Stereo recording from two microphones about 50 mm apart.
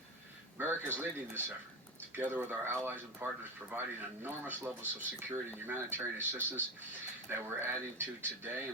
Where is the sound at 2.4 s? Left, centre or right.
Right.